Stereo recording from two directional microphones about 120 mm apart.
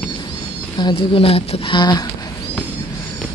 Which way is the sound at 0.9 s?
50° left (ahead or behind).